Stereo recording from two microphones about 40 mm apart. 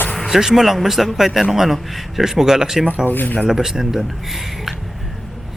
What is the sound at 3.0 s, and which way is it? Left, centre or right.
Speech, left.